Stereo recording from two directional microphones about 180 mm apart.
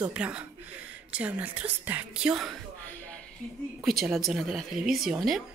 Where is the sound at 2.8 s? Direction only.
10° left (ahead or behind).